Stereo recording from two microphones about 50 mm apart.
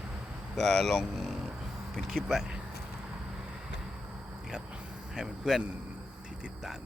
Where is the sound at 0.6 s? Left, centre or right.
Centre.